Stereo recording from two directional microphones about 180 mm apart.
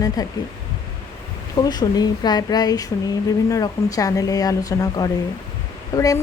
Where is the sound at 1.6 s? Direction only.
20° left (ahead or behind).